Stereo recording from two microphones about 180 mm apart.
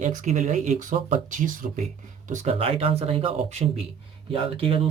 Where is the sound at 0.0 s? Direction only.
45° right (ahead or behind).